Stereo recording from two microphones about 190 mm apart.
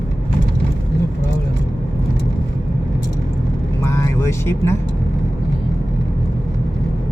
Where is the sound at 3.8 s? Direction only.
15° left (ahead or behind).